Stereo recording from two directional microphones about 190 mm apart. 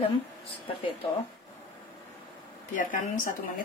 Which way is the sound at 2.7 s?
45° left (ahead or behind).